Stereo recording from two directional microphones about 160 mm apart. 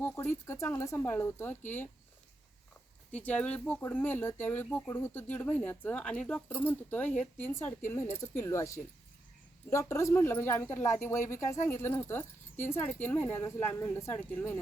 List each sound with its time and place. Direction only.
0.0 s speech: 15° left (ahead or behind)
3.1 s speech: 10° left (ahead or behind)